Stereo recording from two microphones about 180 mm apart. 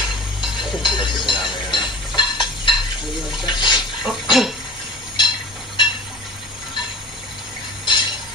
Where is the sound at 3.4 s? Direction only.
25° left (ahead or behind).